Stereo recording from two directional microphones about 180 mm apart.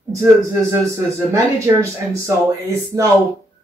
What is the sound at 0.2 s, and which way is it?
Speech, 15° right (ahead or behind).